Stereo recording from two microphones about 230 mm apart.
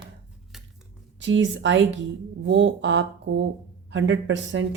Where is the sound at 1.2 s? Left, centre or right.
Right.